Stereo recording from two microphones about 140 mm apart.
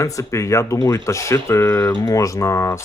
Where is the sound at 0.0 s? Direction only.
20° left (ahead or behind).